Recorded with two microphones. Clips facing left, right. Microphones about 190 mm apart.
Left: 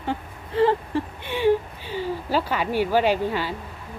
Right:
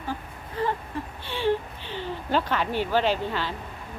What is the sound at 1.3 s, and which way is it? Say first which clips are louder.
A woman's voice: left 5 dB; 10° left (ahead or behind).